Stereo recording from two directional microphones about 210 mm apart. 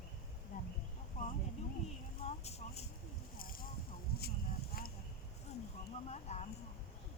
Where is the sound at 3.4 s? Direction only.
45° left (ahead or behind).